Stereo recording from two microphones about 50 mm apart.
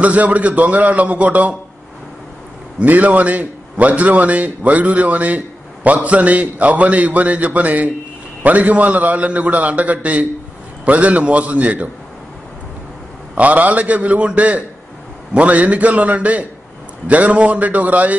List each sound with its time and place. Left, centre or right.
0.0 s a man's voice: right
2.8 s a man's voice: right
13.3 s a man's voice: right